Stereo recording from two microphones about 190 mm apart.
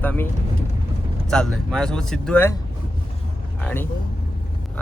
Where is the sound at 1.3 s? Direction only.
5° left (ahead or behind).